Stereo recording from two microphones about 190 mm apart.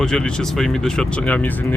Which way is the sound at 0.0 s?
5° left (ahead or behind).